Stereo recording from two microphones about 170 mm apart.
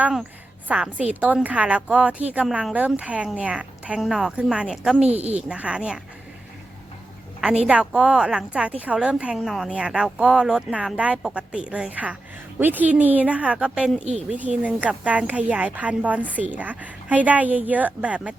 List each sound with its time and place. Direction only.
0.0 s speech: 5° right (ahead or behind)
5.0 s a woman's voice: 40° right (ahead or behind)
5.5 s speech: 5° right (ahead or behind)
7.7 s speech: 5° right (ahead or behind)